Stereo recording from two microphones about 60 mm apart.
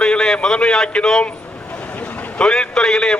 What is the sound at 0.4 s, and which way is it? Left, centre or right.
A man's voice, centre.